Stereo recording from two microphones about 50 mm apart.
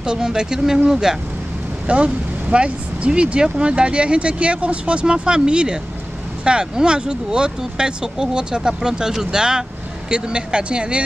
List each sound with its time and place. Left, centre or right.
0.0 s speech: centre